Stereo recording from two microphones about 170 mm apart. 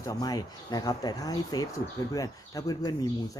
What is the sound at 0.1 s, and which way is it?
Speech, 20° left (ahead or behind).